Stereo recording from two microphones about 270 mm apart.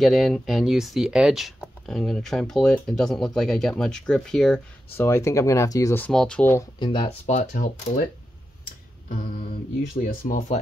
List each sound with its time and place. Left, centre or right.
0.0 s speech: centre
6.8 s speech: centre
9.9 s speech: left